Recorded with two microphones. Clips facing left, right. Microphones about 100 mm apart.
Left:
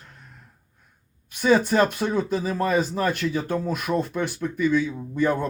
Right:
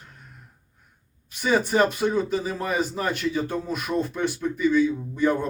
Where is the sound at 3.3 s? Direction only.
55° left (ahead or behind).